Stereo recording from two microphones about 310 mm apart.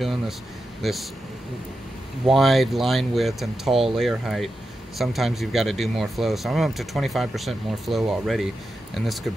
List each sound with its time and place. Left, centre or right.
0.8 s speech: centre
2.2 s speech: centre